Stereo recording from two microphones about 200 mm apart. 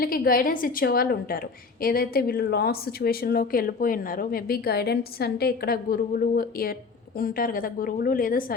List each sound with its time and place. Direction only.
0.0 s a woman's voice: 45° left (ahead or behind)